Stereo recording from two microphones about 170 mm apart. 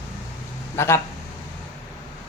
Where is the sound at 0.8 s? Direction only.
15° left (ahead or behind).